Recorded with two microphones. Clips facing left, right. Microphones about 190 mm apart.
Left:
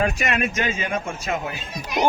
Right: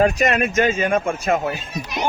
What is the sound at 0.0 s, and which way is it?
Speech, 40° right (ahead or behind).